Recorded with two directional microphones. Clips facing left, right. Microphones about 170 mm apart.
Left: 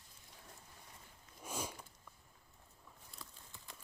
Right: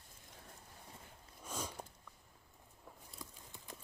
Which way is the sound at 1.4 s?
10° left (ahead or behind).